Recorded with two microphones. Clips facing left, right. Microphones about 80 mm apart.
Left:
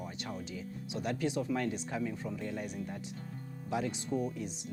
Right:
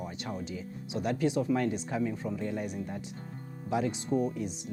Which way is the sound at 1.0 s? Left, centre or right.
Right.